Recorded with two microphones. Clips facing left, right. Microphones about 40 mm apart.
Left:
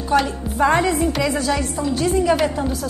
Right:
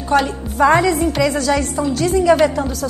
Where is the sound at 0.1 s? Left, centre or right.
Right.